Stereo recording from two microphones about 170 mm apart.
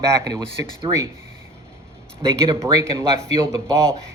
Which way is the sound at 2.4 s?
15° right (ahead or behind).